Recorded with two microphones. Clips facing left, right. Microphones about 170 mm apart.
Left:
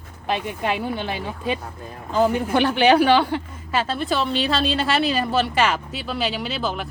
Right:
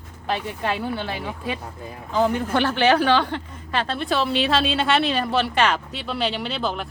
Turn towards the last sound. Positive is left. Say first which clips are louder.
# even
turn(degrees=5)  # may be behind; listen again after turning